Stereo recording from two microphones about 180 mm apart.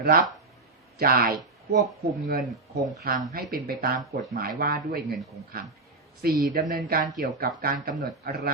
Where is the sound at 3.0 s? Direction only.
55° right (ahead or behind).